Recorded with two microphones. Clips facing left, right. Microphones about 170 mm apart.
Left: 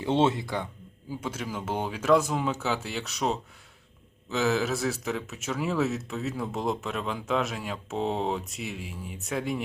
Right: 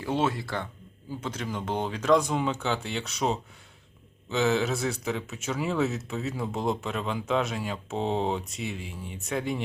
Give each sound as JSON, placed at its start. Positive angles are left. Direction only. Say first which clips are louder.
{"t": 0.0, "sound": "speech", "louder": "left 3 dB", "side_deg": 25}